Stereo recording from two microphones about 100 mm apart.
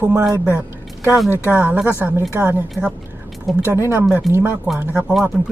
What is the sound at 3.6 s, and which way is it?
Speech, 25° right (ahead or behind).